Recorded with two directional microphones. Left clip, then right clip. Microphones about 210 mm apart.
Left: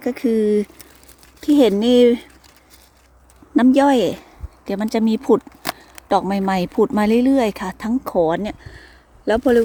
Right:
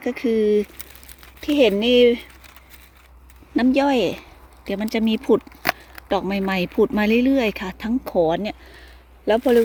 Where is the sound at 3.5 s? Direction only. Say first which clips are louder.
Left 4 dB; 20° left (ahead or behind).